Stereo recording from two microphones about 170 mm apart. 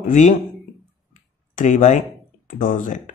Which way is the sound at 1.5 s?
45° left (ahead or behind).